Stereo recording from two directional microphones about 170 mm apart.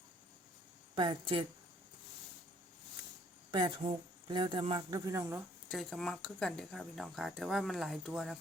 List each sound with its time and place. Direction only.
0.9 s speech: 30° right (ahead or behind)
3.5 s speech: 25° right (ahead or behind)
5.6 s speech: centre (ahead or behind)